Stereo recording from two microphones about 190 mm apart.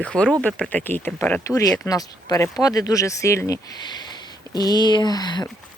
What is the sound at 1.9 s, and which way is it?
Speech, 20° left (ahead or behind).